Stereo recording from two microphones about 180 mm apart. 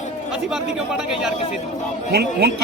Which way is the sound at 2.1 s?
60° right (ahead or behind).